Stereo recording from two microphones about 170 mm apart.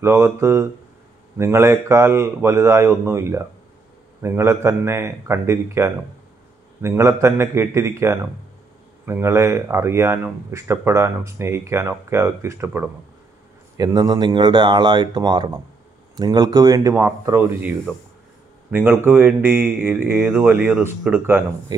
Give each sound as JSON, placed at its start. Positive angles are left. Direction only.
{"t": 0.0, "sound": "speech", "side_deg": -15}